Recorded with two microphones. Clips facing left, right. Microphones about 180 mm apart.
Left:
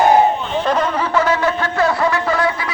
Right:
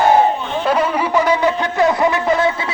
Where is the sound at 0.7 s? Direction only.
10° right (ahead or behind).